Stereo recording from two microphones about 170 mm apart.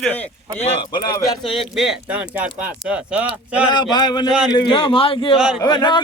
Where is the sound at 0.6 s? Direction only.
30° left (ahead or behind).